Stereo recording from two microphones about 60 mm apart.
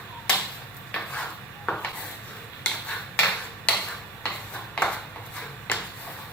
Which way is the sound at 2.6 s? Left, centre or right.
Left.